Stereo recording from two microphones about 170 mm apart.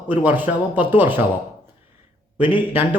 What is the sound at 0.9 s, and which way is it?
Speech, 10° right (ahead or behind).